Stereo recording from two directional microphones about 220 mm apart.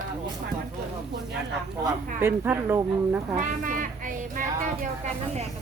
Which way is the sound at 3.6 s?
35° right (ahead or behind).